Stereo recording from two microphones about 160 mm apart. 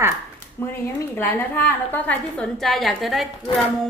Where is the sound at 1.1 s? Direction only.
15° left (ahead or behind).